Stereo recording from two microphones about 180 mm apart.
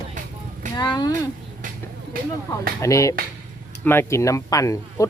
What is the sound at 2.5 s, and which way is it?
Speech, 15° left (ahead or behind).